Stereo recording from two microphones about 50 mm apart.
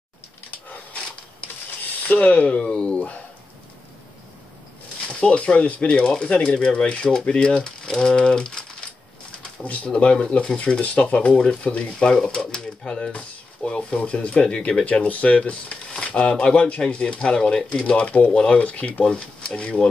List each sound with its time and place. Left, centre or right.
2.1 s speech: left
5.2 s speech: centre
9.8 s speech: centre
17.8 s speech: left
19.0 s speech: centre